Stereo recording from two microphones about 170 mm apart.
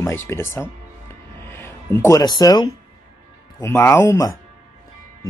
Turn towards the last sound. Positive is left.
turn(degrees=20)  # may be behind; listen again after turning